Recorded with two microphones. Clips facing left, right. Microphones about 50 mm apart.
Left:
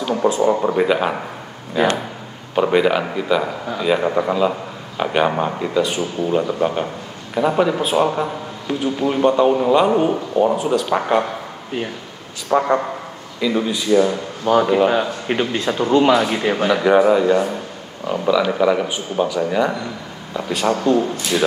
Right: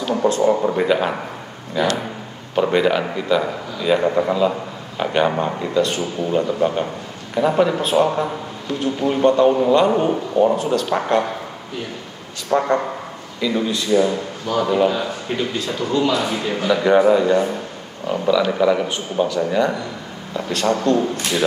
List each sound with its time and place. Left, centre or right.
0.0 s a sound: centre
0.5 s a man's voice: centre
1.8 s a man's voice: left
2.5 s a man's voice: centre
12.4 s a man's voice: centre
14.5 s a man's voice: left
16.8 s a man's voice: centre